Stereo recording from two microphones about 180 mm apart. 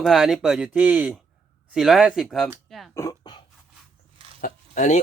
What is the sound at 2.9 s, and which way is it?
Speech, 20° left (ahead or behind).